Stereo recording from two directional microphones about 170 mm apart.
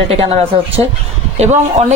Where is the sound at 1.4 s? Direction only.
40° right (ahead or behind).